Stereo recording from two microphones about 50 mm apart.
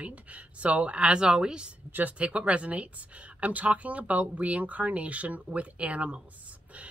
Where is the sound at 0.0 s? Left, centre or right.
Right.